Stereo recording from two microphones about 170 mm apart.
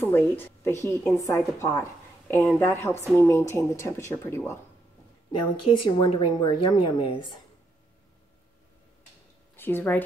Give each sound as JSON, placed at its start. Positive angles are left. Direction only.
{"t": 0.0, "sound": "a woman's voice", "side_deg": 10}
{"t": 5.4, "sound": "speech", "side_deg": 30}
{"t": 9.6, "sound": "a woman's voice", "side_deg": 10}